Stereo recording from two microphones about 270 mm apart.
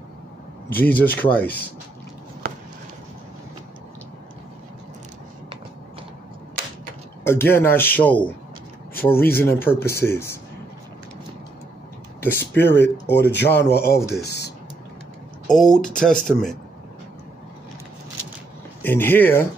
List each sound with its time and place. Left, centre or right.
0.7 s a man's voice: centre
2.4 s a sound: right
7.2 s a man's voice: centre
12.2 s a man's voice: centre
13.1 s speech: left
15.4 s speech: centre
18.8 s a man's voice: centre